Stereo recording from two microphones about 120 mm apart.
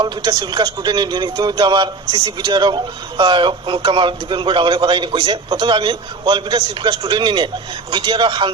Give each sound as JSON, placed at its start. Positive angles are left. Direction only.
{"t": 0.0, "sound": "a man's voice", "side_deg": -35}
{"t": 5.1, "sound": "a man's voice", "side_deg": -50}